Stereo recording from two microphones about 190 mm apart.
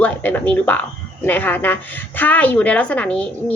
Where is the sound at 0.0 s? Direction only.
10° left (ahead or behind).